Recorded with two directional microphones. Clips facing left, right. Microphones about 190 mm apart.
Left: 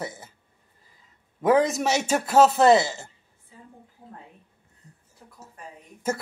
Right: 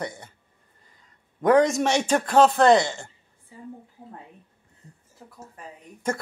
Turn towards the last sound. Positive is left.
turn(degrees=5)  # may be behind; listen again after turning